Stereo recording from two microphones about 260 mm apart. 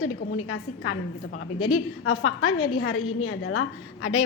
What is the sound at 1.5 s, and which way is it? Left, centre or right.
A woman's voice, left.